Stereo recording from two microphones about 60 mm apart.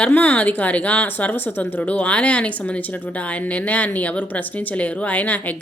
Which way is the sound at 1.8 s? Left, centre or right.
Left.